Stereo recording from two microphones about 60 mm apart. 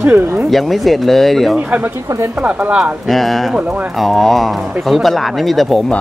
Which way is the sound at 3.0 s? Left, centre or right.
Centre.